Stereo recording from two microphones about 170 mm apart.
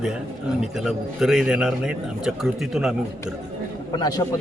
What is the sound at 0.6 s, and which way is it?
A man's voice, 5° right (ahead or behind).